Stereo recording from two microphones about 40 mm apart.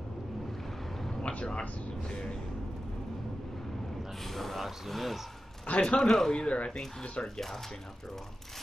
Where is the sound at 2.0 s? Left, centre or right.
Left.